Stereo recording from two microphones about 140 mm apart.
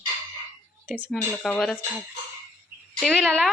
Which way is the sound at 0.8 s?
10° right (ahead or behind).